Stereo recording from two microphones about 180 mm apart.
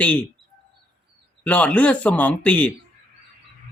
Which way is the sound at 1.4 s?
10° left (ahead or behind).